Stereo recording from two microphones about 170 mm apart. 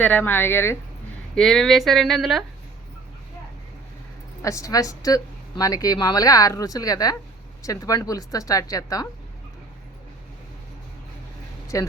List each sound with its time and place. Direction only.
0.0 s speech: 10° left (ahead or behind)
1.4 s speech: centre (ahead or behind)
4.4 s a woman's voice: 20° left (ahead or behind)
11.7 s a woman's voice: 20° left (ahead or behind)